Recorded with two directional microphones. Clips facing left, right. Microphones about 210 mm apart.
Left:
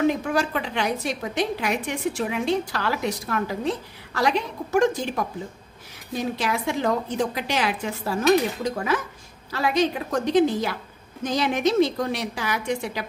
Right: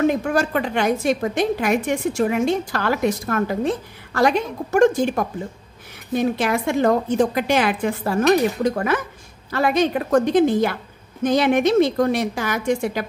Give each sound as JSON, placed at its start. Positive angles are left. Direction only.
{"t": 0.0, "sound": "a woman's voice", "side_deg": -50}